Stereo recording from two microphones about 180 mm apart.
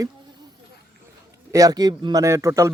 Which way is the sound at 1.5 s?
20° right (ahead or behind).